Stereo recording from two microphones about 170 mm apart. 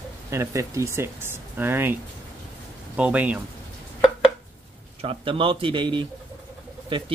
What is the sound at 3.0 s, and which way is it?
Speech, 10° right (ahead or behind).